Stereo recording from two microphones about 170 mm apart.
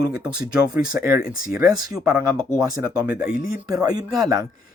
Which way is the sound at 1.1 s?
60° left (ahead or behind).